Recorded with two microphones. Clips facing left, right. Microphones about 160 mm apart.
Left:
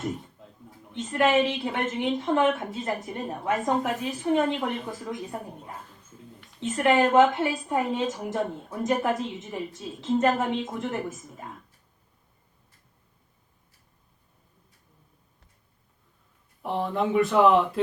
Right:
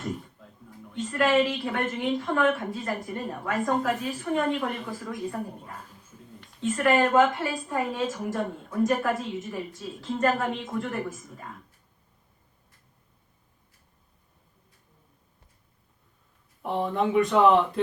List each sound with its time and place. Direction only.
0.9 s a woman's voice: 20° left (ahead or behind)
16.6 s speech: centre (ahead or behind)